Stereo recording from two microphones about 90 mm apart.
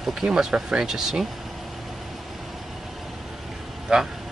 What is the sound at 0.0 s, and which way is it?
Speech, 5° right (ahead or behind).